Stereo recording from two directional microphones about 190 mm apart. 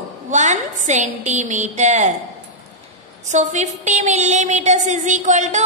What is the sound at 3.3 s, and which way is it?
A woman's voice, 40° right (ahead or behind).